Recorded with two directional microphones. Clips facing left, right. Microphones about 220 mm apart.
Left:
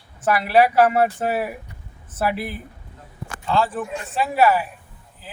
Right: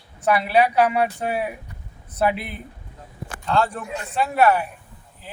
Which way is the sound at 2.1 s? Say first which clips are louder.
Right 1 dB; 5° left (ahead or behind).